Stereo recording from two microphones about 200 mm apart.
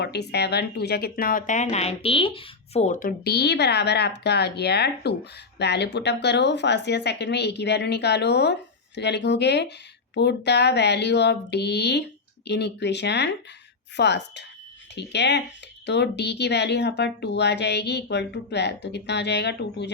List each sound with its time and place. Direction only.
0.0 s speech: 55° left (ahead or behind)